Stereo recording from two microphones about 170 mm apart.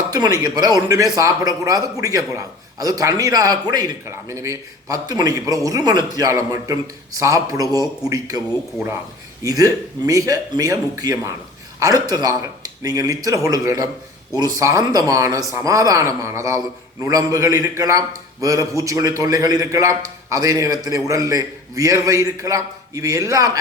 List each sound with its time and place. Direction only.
0.1 s speech: 20° right (ahead or behind)
9.4 s speech: 20° right (ahead or behind)